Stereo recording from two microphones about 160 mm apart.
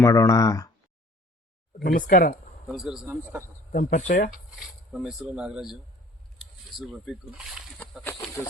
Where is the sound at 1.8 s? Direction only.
60° left (ahead or behind).